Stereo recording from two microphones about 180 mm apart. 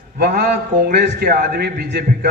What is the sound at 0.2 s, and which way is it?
A man's voice, 65° right (ahead or behind).